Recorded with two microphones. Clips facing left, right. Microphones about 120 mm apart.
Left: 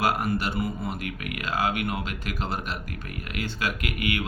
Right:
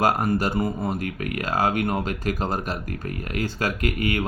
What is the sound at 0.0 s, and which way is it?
Speech, 40° right (ahead or behind).